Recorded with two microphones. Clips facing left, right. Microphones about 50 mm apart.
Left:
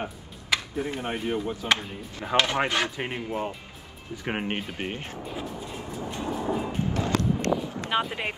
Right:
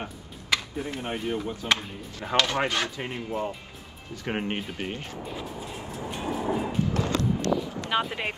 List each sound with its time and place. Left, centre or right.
0.0 s music: centre
1.5 s speech: centre
2.3 s speech: left; by 4.7 s centre
4.7 s speech: left
5.2 s speech: centre
5.7 s vehicle: centre
6.0 s train: centre
6.7 s music: left
7.9 s speech: centre